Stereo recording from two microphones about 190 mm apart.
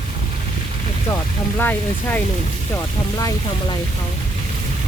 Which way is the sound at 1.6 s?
10° left (ahead or behind).